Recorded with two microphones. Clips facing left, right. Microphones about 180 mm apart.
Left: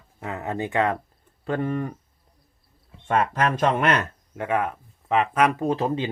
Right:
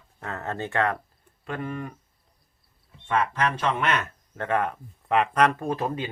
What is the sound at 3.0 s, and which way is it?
Speech, 45° left (ahead or behind).